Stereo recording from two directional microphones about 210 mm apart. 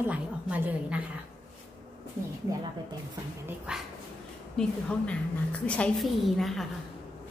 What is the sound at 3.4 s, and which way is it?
Speech, 5° right (ahead or behind).